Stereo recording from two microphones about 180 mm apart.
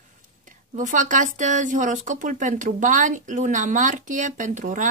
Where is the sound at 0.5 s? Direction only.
45° right (ahead or behind).